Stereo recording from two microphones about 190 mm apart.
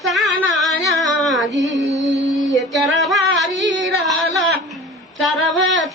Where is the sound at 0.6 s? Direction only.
Centre (ahead or behind).